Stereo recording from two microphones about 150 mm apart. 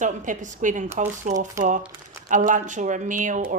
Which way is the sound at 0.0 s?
60° right (ahead or behind).